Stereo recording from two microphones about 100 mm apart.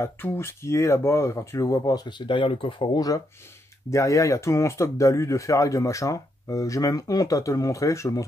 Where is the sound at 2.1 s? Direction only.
60° left (ahead or behind).